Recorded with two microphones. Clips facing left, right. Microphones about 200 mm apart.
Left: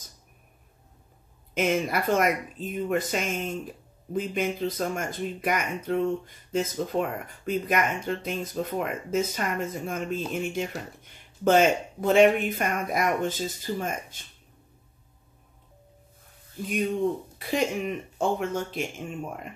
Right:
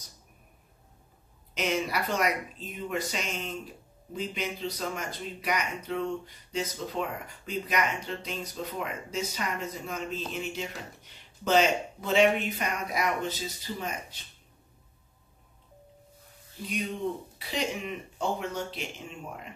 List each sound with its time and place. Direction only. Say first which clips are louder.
1.5 s speech: left 4 dB; 50° left (ahead or behind)
16.6 s speech: left 7 dB; 50° left (ahead or behind)